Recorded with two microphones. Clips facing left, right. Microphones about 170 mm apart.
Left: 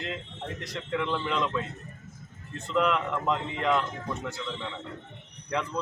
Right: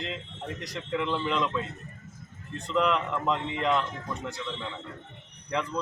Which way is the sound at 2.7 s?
Centre (ahead or behind).